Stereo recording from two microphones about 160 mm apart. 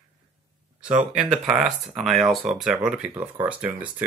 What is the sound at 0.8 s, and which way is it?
Speech, 10° right (ahead or behind).